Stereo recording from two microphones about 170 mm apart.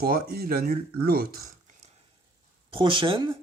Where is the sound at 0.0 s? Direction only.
65° right (ahead or behind).